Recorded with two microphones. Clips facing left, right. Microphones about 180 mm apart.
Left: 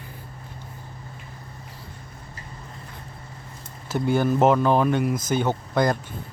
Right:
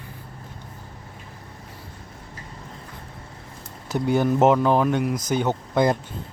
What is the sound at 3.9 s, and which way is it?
Speech, 20° right (ahead or behind).